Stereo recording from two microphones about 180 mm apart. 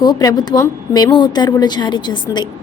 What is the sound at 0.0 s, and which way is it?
A woman's voice, 20° left (ahead or behind).